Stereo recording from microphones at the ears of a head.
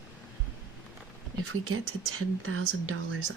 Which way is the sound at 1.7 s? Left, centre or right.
Right.